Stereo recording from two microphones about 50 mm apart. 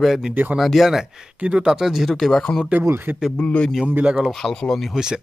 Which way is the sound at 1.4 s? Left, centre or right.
Centre.